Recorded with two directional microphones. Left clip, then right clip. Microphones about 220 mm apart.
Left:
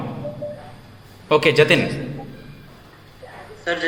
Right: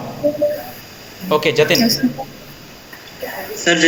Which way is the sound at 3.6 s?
55° right (ahead or behind).